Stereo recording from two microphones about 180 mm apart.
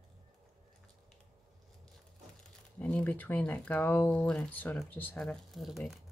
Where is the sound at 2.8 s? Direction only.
10° left (ahead or behind).